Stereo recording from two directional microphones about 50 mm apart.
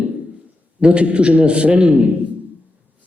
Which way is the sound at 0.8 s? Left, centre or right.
Right.